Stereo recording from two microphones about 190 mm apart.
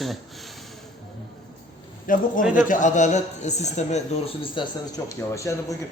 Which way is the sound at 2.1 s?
45° left (ahead or behind).